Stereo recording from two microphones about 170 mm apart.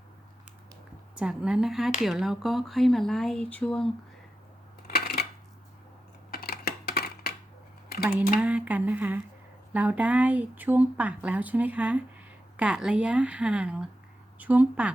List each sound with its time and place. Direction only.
1.1 s speech: 5° right (ahead or behind)
4.9 s coin: 65° left (ahead or behind)
6.3 s a sound: 65° left (ahead or behind)
8.4 s speech: 10° right (ahead or behind)